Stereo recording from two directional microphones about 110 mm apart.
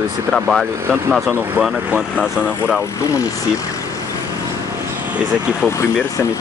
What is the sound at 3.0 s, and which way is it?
Speech, 30° left (ahead or behind).